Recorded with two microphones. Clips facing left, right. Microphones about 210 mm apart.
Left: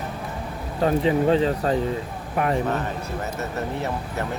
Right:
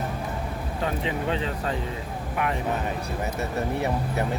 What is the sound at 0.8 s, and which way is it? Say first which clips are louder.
Speech: left 9 dB; 35° left (ahead or behind).